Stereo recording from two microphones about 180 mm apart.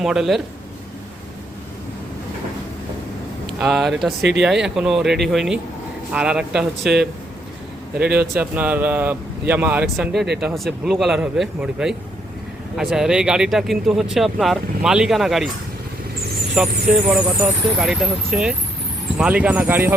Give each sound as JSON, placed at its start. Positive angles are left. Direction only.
{"t": 0.0, "sound": "speech", "side_deg": 0}
{"t": 3.6, "sound": "speech", "side_deg": 0}
{"t": 4.2, "sound": "speech", "side_deg": -75}
{"t": 4.4, "sound": "speech", "side_deg": -5}
{"t": 7.9, "sound": "a man's voice", "side_deg": -60}
{"t": 8.4, "sound": "speech", "side_deg": -10}
{"t": 16.6, "sound": "speech", "side_deg": -5}